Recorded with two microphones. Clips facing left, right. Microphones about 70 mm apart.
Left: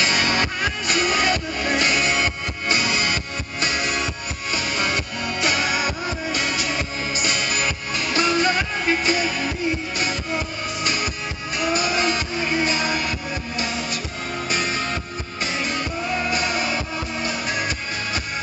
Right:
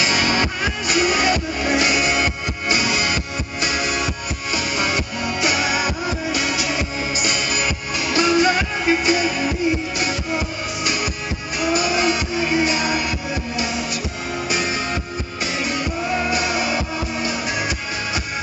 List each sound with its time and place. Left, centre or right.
0.0 s music: centre